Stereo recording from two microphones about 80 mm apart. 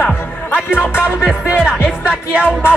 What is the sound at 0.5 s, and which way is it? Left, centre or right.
Music, left.